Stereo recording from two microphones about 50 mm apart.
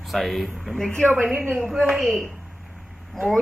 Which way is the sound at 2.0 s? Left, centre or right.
Right.